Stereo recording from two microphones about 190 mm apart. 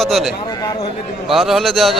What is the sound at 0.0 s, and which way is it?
A man's voice, centre (ahead or behind).